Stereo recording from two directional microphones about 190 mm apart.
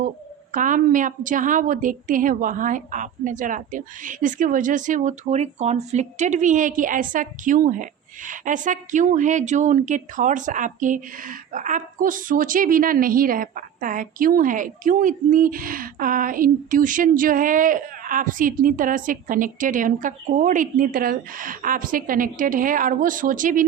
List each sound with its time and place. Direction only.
0.5 s a woman's voice: 45° right (ahead or behind)